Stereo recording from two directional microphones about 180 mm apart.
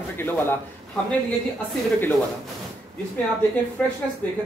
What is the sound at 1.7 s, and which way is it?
Speech, 10° left (ahead or behind).